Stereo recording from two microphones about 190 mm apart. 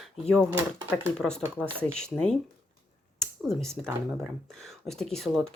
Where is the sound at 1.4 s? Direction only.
10° right (ahead or behind).